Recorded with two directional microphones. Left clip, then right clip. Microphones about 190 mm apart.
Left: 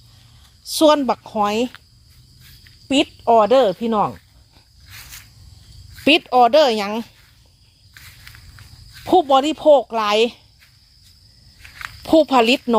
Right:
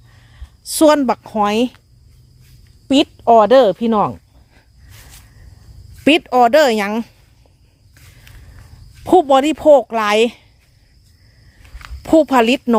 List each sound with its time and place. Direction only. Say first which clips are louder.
0.7 s speech: right 2 dB; 25° right (ahead or behind)
2.8 s speech: right 4 dB; 25° right (ahead or behind)
6.1 s speech: right 2 dB; 15° right (ahead or behind)
9.0 s speech: right 3 dB; 20° right (ahead or behind)
12.0 s speech: right 2 dB; 15° right (ahead or behind)